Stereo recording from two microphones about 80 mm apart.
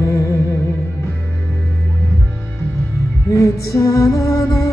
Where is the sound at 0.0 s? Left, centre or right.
Left.